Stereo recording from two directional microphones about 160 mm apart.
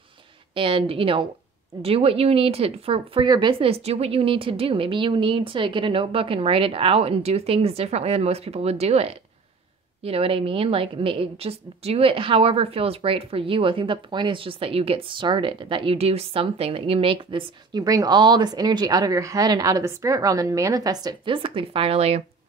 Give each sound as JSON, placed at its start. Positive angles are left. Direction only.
{"t": 0.6, "sound": "a woman's voice", "side_deg": -35}